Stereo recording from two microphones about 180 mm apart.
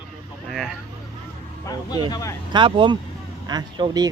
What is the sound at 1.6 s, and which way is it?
Speech, 20° left (ahead or behind).